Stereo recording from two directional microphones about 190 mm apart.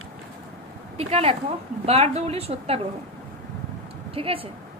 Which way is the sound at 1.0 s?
30° right (ahead or behind).